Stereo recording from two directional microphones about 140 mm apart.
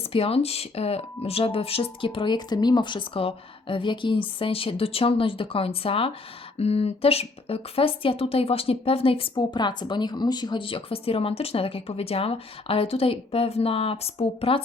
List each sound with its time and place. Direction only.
0.1 s speech: 45° left (ahead or behind)
9.3 s speech: 30° left (ahead or behind)